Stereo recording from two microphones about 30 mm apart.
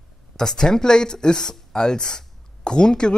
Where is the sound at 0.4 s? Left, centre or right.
Centre.